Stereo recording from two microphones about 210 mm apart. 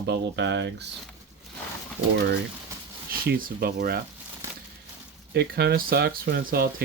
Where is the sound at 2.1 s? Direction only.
50° right (ahead or behind).